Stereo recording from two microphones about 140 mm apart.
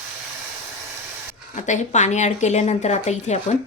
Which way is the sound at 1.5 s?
55° left (ahead or behind).